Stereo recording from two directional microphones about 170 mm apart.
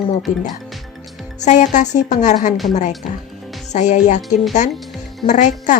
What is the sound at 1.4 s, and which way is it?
A woman's voice, 45° left (ahead or behind).